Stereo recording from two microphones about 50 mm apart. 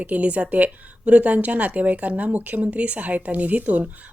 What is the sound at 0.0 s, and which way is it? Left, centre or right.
A woman's voice, right.